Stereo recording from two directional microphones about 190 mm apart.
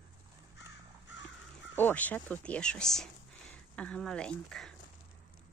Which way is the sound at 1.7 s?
10° left (ahead or behind).